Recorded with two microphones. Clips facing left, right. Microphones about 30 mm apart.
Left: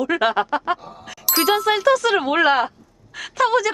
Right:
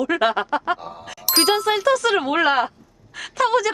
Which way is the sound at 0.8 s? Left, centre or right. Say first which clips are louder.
Right 4 dB; centre.